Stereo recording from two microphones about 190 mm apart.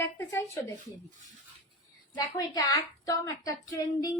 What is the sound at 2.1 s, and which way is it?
A woman's voice, 20° left (ahead or behind).